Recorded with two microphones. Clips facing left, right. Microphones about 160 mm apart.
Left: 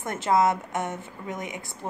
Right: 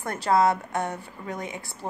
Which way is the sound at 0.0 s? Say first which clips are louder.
Right 1 dB; 20° left (ahead or behind).